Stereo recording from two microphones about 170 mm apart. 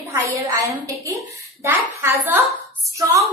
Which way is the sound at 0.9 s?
20° right (ahead or behind).